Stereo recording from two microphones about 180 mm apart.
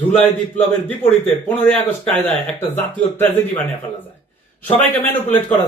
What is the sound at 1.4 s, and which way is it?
Speech, 10° left (ahead or behind).